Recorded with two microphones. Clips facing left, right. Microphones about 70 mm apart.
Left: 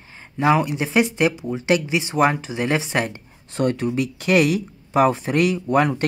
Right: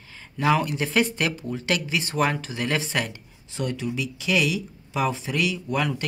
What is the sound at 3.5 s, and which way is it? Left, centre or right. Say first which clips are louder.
Speech: left 7 dB; left.